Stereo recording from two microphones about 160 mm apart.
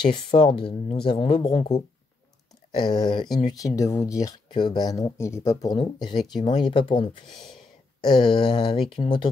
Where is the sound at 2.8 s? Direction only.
25° left (ahead or behind).